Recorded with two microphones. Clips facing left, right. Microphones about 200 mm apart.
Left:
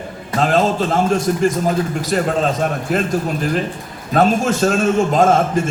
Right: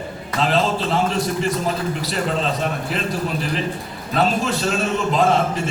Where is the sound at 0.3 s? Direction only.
45° left (ahead or behind).